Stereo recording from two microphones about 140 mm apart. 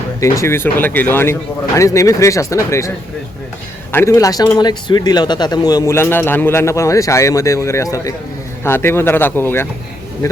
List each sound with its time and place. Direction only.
0.2 s speech: 20° left (ahead or behind)
3.9 s speech: 20° left (ahead or behind)